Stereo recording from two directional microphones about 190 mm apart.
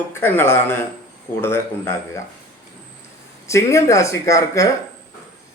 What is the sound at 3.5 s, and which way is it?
A man's voice, 15° left (ahead or behind).